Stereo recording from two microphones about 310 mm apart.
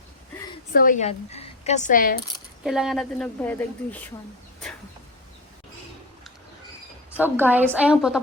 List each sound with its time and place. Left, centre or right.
0.7 s speech: left
2.6 s a woman's voice: centre
7.2 s a woman's voice: centre